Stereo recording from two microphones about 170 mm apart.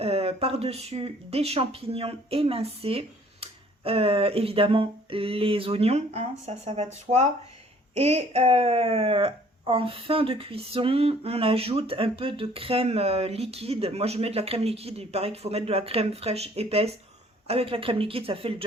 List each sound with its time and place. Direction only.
0.0 s speech: 35° right (ahead or behind)